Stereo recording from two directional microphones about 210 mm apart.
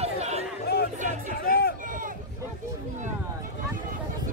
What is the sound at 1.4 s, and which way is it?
Run, 45° left (ahead or behind).